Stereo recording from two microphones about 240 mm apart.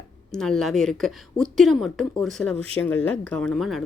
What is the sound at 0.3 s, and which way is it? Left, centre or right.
A woman's voice, centre.